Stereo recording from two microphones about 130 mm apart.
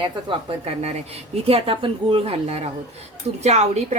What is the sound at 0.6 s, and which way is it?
A woman's voice, 55° right (ahead or behind).